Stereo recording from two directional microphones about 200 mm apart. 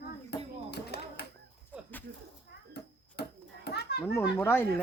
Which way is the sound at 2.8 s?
55° left (ahead or behind).